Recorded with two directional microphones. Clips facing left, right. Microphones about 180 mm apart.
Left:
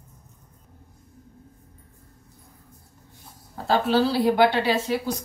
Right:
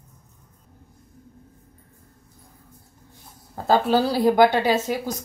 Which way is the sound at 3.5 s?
45° right (ahead or behind).